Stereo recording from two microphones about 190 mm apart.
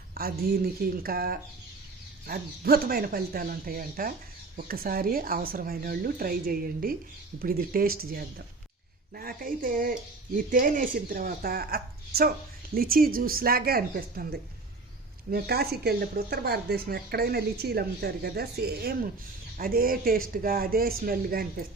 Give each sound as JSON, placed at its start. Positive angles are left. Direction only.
{"t": 0.1, "sound": "speech", "side_deg": -50}